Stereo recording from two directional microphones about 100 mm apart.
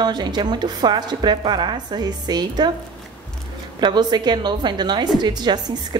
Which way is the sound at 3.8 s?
50° right (ahead or behind).